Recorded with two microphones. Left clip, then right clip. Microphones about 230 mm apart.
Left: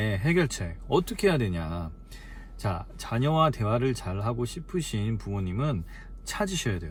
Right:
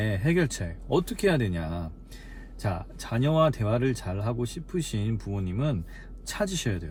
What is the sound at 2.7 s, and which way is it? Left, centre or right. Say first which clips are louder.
Speech: even; centre.